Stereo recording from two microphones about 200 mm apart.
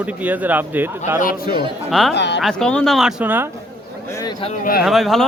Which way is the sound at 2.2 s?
60° left (ahead or behind).